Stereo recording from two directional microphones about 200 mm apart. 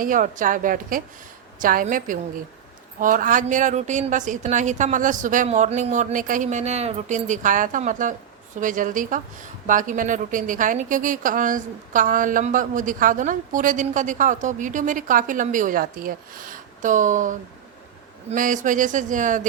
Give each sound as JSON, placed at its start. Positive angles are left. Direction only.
{"t": 0.0, "sound": "a woman's voice", "side_deg": -40}